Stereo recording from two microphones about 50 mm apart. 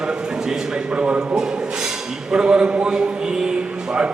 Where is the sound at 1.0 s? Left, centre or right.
Right.